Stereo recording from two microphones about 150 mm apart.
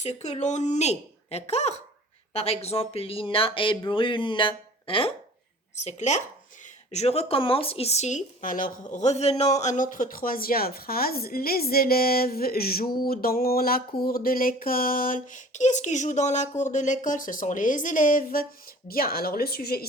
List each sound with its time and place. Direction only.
0.0 s speech: 50° left (ahead or behind)
5.7 s speech: 50° left (ahead or behind); by 12.9 s 90° left
13.1 s a sound: 85° left; by 18.4 s 70° left (ahead or behind)
18.9 s speech: 80° left